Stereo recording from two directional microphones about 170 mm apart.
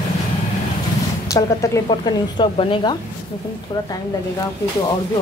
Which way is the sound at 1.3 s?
20° left (ahead or behind).